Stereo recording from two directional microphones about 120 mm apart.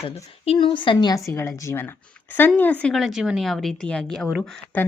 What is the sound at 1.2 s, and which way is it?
Speech, 20° left (ahead or behind).